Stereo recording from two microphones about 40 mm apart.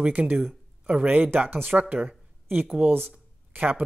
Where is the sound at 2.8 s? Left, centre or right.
Right.